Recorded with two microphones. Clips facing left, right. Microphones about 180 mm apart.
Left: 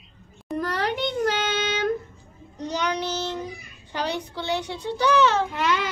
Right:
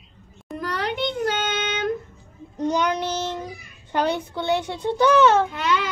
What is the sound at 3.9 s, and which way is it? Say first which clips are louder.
A child's voice: right 5 dB; 55° right (ahead or behind).